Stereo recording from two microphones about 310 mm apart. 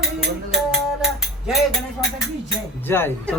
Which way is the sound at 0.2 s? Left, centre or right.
Centre.